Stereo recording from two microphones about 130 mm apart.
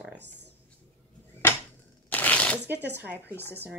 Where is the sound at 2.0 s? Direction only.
15° left (ahead or behind).